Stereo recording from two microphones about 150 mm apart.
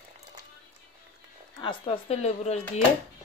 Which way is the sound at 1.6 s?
35° left (ahead or behind).